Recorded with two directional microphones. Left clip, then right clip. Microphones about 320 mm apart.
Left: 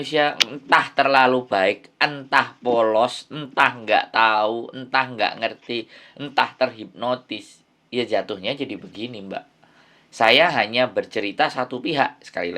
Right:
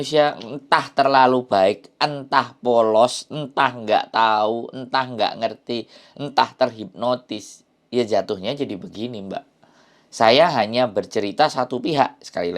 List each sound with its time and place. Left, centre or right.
0.0 s speech: right